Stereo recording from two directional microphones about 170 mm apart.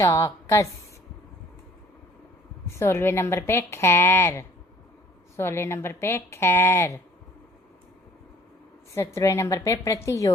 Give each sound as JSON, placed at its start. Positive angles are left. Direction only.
{"t": 0.0, "sound": "a woman's voice", "side_deg": 20}
{"t": 2.6, "sound": "a woman's voice", "side_deg": 15}
{"t": 9.0, "sound": "a woman's voice", "side_deg": 15}